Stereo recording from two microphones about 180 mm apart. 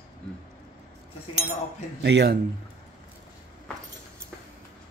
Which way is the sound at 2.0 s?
70° right (ahead or behind).